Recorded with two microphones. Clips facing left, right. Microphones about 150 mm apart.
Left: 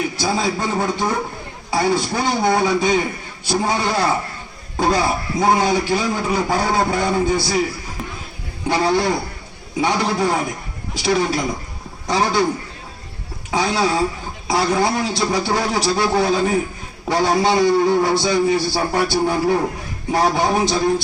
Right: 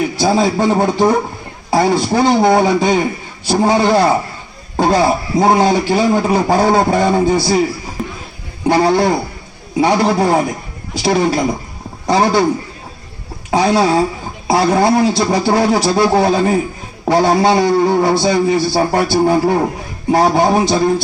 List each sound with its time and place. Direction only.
0.2 s a man's voice: 55° right (ahead or behind)
8.6 s a man's voice: 55° right (ahead or behind)
13.5 s a man's voice: 60° right (ahead or behind)